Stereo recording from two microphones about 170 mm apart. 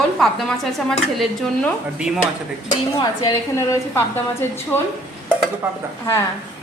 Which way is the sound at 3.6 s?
15° left (ahead or behind).